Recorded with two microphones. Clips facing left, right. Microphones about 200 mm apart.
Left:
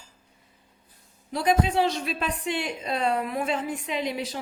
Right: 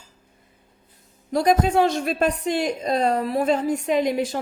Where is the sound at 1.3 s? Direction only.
45° right (ahead or behind).